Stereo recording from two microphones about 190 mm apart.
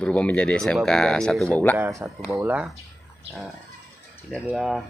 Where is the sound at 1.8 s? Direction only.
15° right (ahead or behind).